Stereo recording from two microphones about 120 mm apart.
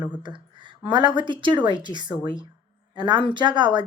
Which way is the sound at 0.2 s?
40° right (ahead or behind).